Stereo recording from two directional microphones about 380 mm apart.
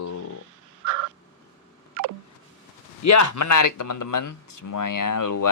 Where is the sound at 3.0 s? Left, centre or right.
Left.